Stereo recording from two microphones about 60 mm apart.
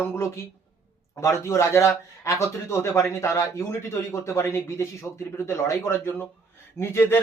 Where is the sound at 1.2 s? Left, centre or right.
Left.